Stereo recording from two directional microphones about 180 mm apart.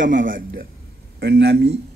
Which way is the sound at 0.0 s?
50° right (ahead or behind).